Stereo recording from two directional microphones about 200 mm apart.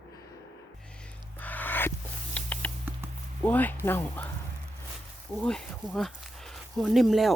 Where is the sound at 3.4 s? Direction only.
10° left (ahead or behind).